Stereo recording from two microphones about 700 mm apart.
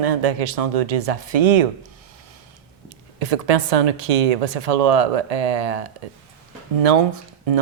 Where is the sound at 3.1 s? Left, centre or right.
Right.